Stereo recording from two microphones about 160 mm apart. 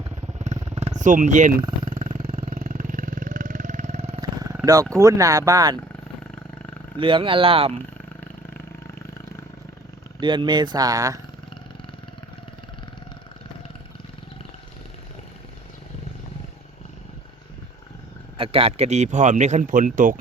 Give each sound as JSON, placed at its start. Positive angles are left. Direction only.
{"t": 0.3, "sound": "motorcycle", "side_deg": -45}
{"t": 2.2, "sound": "vehicle", "side_deg": -40}
{"t": 2.6, "sound": "vehicle", "side_deg": -55}
{"t": 4.6, "sound": "speech", "side_deg": -20}
{"t": 7.0, "sound": "speech", "side_deg": -35}
{"t": 10.2, "sound": "speech", "side_deg": -30}
{"t": 18.3, "sound": "a man's voice", "side_deg": -35}